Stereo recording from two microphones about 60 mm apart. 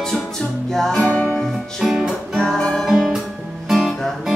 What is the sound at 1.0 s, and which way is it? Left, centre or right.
Music, left.